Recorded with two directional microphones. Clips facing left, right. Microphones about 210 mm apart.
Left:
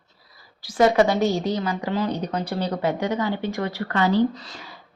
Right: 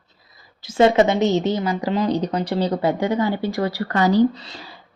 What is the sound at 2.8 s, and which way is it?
A woman's voice, 30° right (ahead or behind).